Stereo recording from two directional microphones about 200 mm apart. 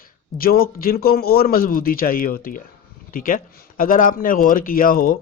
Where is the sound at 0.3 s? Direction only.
50° left (ahead or behind).